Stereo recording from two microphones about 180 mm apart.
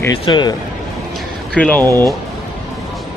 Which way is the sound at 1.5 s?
5° left (ahead or behind).